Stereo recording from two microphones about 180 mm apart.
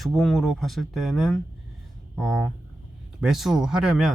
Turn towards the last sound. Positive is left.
turn(degrees=-5)  # may be behind; listen again after turning